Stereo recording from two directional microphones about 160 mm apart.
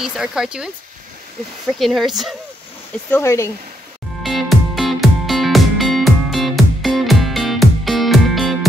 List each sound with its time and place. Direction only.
0.0 s speech: 5° right (ahead or behind)
1.8 s speech: centre (ahead or behind)
3.1 s speech: 15° left (ahead or behind)
4.2 s music: centre (ahead or behind)